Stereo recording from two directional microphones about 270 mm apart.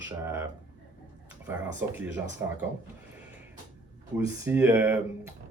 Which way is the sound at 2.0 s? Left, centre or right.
Centre.